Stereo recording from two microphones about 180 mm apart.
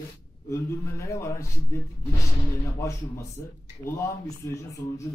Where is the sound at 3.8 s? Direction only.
15° left (ahead or behind).